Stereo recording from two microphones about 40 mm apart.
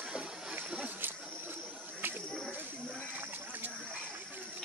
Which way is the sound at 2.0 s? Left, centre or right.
Right.